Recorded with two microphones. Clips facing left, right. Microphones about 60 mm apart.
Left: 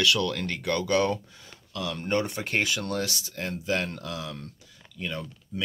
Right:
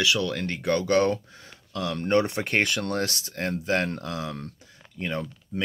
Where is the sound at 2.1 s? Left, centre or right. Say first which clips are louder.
Right 4 dB; right.